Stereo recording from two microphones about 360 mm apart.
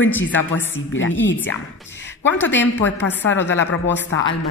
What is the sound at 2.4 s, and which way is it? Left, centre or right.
Speech, left.